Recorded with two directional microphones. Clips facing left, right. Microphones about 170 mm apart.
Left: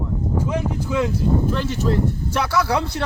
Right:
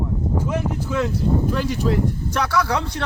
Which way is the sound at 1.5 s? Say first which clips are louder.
Right 1 dB; 10° right (ahead or behind).